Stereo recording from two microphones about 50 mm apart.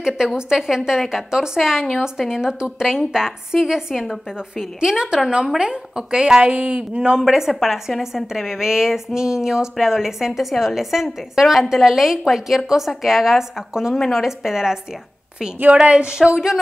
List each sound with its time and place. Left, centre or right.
0.4 s a woman's voice: centre
6.4 s speech: right
7.2 s a woman's voice: centre
15.6 s speech: right